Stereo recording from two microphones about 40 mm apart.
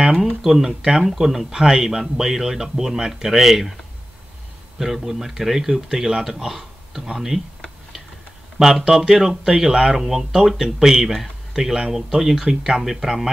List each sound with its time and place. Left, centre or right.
0.4 s speech: centre
8.5 s speech: centre